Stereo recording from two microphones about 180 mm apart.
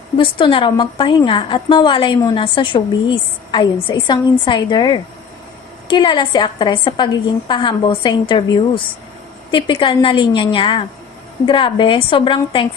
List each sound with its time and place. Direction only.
0.2 s a woman's voice: 30° left (ahead or behind)